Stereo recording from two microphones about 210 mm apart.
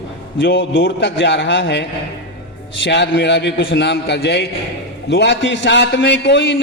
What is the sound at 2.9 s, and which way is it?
A man's voice, 55° left (ahead or behind).